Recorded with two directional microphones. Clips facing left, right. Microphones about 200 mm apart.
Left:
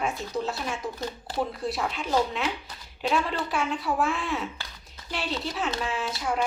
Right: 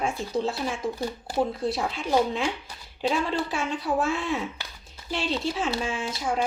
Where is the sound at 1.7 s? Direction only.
30° right (ahead or behind).